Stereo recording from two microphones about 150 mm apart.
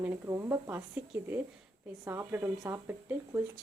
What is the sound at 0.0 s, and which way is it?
Speech, 20° right (ahead or behind).